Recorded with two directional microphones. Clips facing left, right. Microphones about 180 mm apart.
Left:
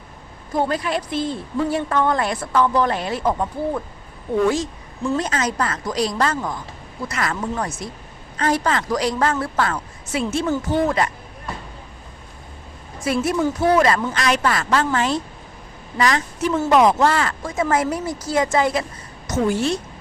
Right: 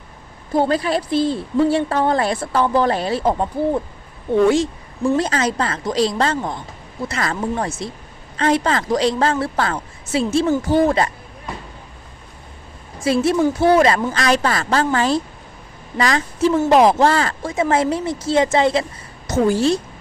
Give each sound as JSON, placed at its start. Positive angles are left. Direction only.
{"t": 0.5, "sound": "a woman's voice", "side_deg": -30}
{"t": 13.0, "sound": "a woman's voice", "side_deg": -30}